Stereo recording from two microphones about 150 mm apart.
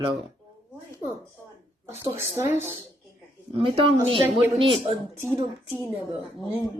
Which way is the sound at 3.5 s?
40° right (ahead or behind).